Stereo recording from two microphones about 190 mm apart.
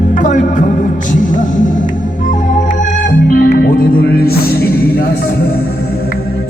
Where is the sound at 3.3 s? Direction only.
50° left (ahead or behind).